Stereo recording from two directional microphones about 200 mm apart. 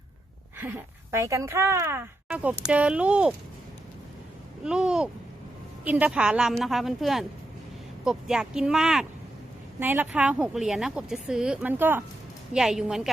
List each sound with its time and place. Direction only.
0.6 s speech: 10° right (ahead or behind)
4.6 s speech: 5° right (ahead or behind)